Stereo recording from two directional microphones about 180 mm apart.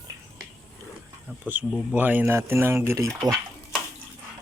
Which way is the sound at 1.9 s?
10° right (ahead or behind).